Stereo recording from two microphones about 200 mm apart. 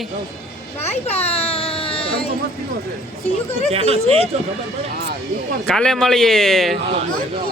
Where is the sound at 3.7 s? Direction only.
30° right (ahead or behind).